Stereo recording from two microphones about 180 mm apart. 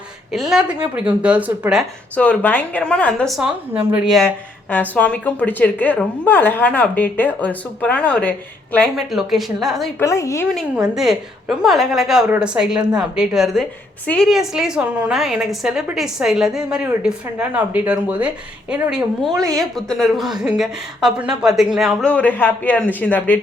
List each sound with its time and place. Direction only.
0.3 s speech: centre (ahead or behind)
2.1 s a woman's voice: 5° left (ahead or behind)
4.7 s a woman's voice: 10° left (ahead or behind)
10.0 s a woman's voice: 15° left (ahead or behind)
10.5 s a woman's voice: centre (ahead or behind)